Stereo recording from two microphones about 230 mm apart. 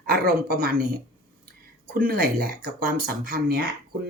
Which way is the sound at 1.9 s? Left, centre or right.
Right.